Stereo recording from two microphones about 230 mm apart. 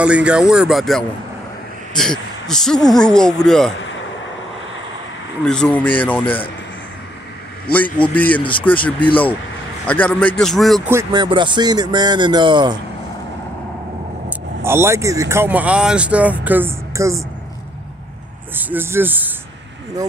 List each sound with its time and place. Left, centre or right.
0.0 s speech: centre
5.4 s a man's voice: centre
7.7 s a man's voice: centre
10.9 s speech: centre
14.6 s speech: centre
18.5 s speech: centre